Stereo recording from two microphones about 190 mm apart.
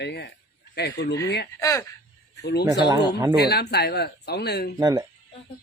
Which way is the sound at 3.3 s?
55° left (ahead or behind).